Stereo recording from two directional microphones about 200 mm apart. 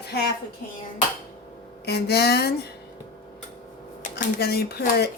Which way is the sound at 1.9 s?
55° left (ahead or behind).